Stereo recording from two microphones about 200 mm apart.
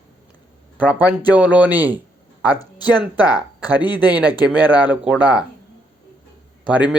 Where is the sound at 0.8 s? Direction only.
10° right (ahead or behind).